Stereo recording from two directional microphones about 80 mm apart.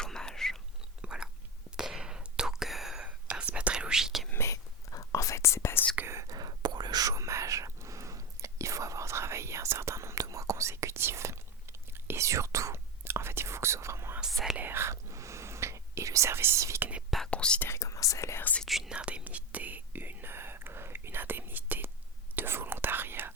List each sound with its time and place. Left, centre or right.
0.0 s whispering: centre
1.0 s biting: centre
1.7 s whispering: centre
3.1 s whispering: centre
4.3 s whispering: left
6.1 s whispering: right
6.3 s whispering: right
17.2 s whispering: centre
17.6 s whispering: left
18.3 s whispering: left
18.6 s whispering: centre
18.9 s whispering: centre